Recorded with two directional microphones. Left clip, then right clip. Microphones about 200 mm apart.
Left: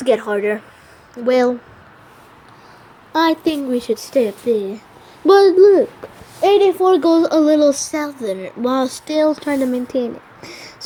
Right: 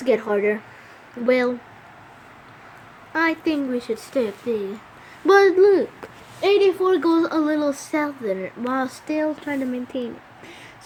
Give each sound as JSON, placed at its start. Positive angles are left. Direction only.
{"t": 0.0, "sound": "speech", "side_deg": 20}
{"t": 3.1, "sound": "child singing", "side_deg": 20}
{"t": 4.1, "sound": "speech", "side_deg": 15}
{"t": 5.5, "sound": "speech", "side_deg": 5}
{"t": 6.9, "sound": "child singing", "side_deg": 20}
{"t": 10.4, "sound": "a sound", "side_deg": 20}